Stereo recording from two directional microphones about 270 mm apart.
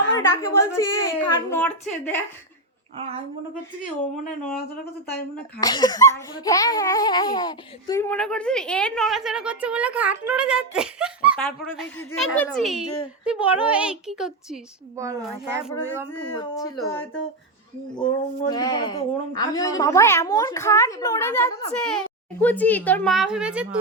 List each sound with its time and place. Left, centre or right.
0.2 s a woman's voice: centre
5.5 s a child's voice: centre
16.1 s a woman's voice: centre